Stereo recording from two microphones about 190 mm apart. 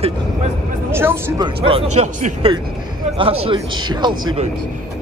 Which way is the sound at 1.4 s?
30° right (ahead or behind).